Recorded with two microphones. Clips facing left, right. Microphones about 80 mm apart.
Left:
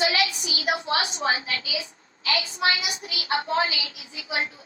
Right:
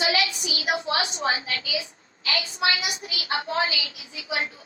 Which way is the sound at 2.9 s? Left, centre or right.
Left.